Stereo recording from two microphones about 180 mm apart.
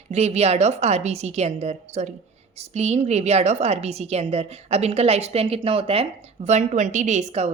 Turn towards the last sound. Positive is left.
turn(degrees=-40)  # may be behind; listen again after turning